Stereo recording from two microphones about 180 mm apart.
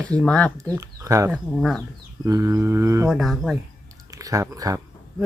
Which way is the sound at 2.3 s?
20° right (ahead or behind).